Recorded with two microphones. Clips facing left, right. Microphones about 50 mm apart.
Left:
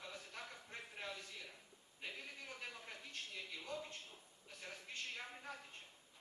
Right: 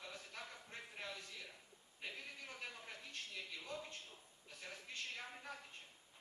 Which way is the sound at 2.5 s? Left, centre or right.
Centre.